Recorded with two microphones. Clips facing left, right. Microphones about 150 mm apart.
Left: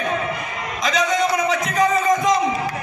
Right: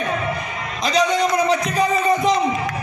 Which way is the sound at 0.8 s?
35° right (ahead or behind).